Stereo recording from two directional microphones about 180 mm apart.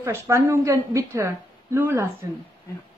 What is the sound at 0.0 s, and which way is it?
Speech, 15° right (ahead or behind).